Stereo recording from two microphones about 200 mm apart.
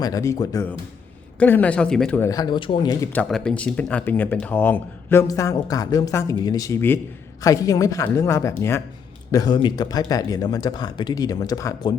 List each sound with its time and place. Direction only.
0.0 s speech: 15° left (ahead or behind)
3.1 s speech: 5° left (ahead or behind)